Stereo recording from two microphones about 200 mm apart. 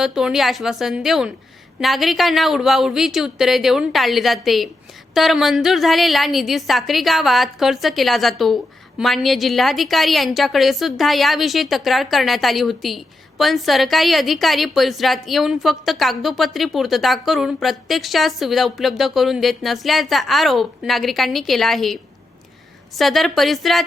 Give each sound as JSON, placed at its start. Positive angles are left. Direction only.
{"t": 0.0, "sound": "a woman's voice", "side_deg": 0}
{"t": 23.0, "sound": "a woman's voice", "side_deg": 0}